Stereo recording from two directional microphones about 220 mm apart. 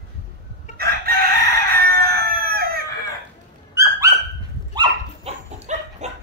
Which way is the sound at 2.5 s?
45° right (ahead or behind).